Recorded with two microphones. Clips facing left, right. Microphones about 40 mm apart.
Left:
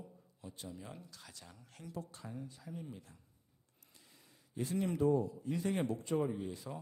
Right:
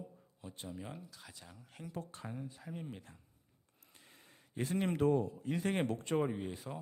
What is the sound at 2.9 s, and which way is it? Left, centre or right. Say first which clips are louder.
Speech: right 2 dB; right.